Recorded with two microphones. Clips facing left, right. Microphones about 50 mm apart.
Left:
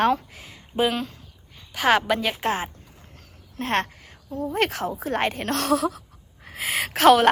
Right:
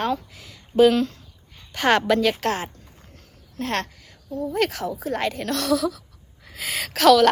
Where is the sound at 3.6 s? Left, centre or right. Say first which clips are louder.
Left 2 dB; left.